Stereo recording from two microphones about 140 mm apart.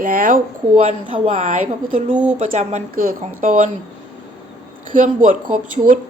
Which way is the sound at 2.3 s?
60° right (ahead or behind).